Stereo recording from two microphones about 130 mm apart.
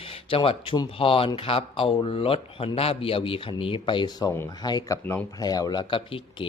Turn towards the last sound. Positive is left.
turn(degrees=40)  # may be behind; listen again after turning